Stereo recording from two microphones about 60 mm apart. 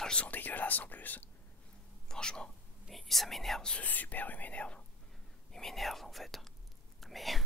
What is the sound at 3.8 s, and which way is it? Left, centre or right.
Speech, left.